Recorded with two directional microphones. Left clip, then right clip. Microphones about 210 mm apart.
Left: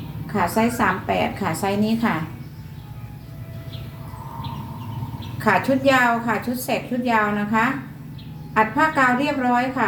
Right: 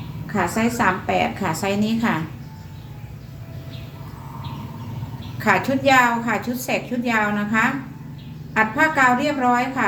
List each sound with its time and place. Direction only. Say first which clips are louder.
0.5 s a woman's voice: right 1 dB; 20° right (ahead or behind)
5.4 s a woman's voice: even; 20° right (ahead or behind)